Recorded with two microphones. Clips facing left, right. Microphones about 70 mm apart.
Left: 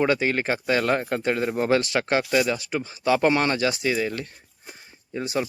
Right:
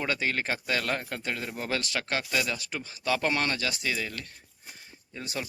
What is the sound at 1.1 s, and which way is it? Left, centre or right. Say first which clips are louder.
Speech: left 10 dB; left.